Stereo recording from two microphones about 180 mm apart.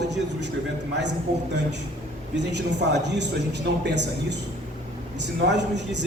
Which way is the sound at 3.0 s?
75° right (ahead or behind).